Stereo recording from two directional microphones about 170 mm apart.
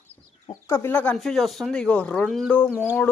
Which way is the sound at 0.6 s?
15° left (ahead or behind).